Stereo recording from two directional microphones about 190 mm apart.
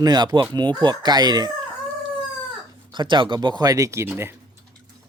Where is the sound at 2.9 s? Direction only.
25° right (ahead or behind).